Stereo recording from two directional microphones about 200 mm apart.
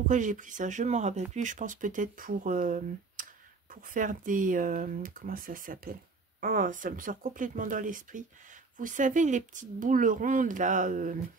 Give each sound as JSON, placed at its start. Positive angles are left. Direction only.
{"t": 0.1, "sound": "speech", "side_deg": -40}